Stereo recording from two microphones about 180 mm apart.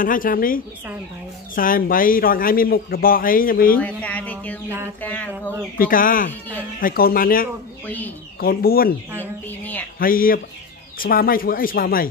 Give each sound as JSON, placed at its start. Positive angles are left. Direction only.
{"t": 0.0, "sound": "a man's voice", "side_deg": 50}
{"t": 3.7, "sound": "a sound", "side_deg": 10}
{"t": 5.8, "sound": "a man's voice", "side_deg": 50}
{"t": 7.8, "sound": "speech", "side_deg": 10}
{"t": 8.4, "sound": "speech", "side_deg": 55}
{"t": 9.2, "sound": "a sound", "side_deg": 10}
{"t": 9.9, "sound": "a man's voice", "side_deg": 50}